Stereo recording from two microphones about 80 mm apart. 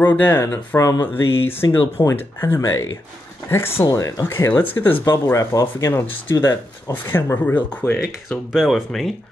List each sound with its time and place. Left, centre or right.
0.0 s speech: left
0.7 s speech: left
1.2 s speech: left
4.5 s speech: left
5.1 s speech: left
6.4 s speech: left
8.5 s speech: centre